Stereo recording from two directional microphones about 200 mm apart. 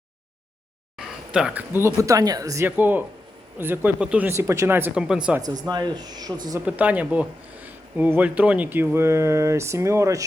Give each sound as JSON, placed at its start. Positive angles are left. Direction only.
{"t": 0.9, "sound": "speech", "side_deg": -5}
{"t": 5.6, "sound": "speech", "side_deg": -20}
{"t": 6.7, "sound": "speech", "side_deg": -10}